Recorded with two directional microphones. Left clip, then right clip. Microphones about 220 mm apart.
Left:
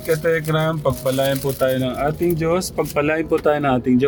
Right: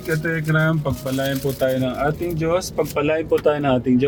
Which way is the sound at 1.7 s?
35° left (ahead or behind).